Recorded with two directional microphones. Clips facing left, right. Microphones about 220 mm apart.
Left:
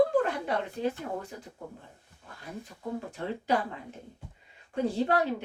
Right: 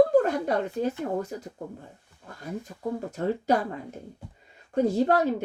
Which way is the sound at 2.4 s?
40° right (ahead or behind).